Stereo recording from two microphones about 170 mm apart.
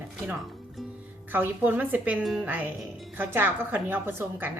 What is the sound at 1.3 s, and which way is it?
Speech, 10° right (ahead or behind).